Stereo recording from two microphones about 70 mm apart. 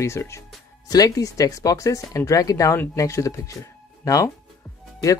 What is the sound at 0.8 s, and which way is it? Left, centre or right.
Speech, left.